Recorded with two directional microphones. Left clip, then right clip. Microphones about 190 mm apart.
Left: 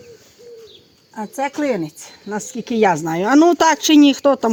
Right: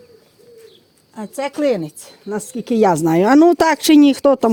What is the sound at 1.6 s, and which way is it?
Speech, 40° right (ahead or behind).